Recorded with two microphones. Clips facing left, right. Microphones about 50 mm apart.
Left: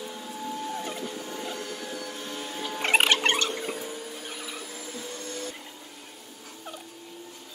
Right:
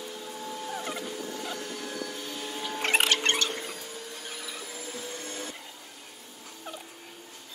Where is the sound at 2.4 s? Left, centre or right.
Centre.